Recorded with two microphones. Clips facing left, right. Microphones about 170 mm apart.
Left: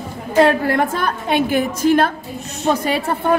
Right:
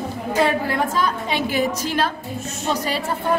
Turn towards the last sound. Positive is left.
turn(degrees=55)  # may be behind; listen again after turning